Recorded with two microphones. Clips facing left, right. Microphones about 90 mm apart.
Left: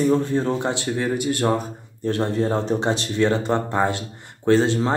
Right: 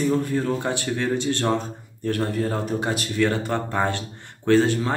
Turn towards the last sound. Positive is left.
turn(degrees=25)  # may be behind; listen again after turning